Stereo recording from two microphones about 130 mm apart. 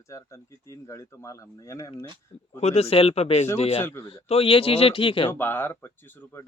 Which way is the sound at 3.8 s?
15° left (ahead or behind).